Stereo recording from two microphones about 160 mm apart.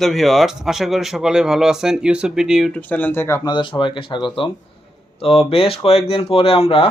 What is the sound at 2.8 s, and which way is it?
Speech, 10° left (ahead or behind).